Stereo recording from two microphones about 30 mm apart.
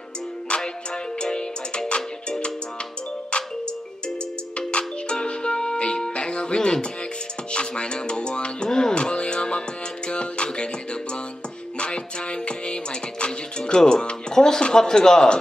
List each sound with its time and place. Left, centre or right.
0.5 s music: left
4.6 s music: left
8.6 s music: left
8.9 s music: left
13.8 s speech: left